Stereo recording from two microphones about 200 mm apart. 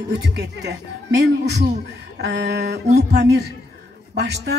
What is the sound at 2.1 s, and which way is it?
Speech, 55° right (ahead or behind).